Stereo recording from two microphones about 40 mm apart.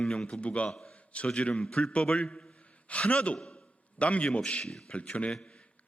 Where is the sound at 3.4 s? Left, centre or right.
Left.